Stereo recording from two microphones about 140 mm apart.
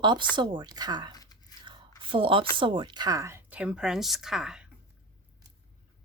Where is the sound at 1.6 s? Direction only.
35° right (ahead or behind).